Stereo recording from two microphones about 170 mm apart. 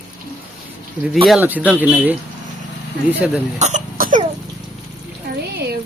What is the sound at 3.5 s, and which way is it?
Throat clearing, 45° right (ahead or behind).